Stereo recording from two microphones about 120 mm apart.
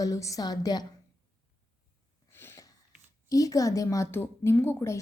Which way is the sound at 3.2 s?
30° left (ahead or behind).